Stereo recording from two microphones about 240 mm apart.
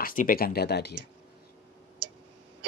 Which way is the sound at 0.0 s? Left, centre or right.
Left.